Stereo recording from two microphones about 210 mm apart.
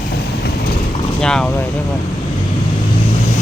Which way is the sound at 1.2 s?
5° left (ahead or behind).